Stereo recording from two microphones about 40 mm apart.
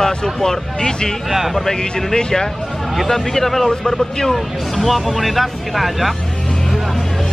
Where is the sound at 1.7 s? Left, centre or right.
Centre.